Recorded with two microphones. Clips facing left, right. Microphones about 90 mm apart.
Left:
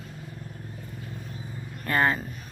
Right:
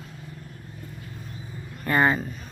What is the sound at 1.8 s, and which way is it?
Speech, 5° right (ahead or behind).